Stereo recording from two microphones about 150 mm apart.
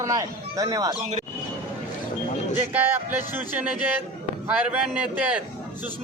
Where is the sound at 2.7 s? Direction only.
15° right (ahead or behind).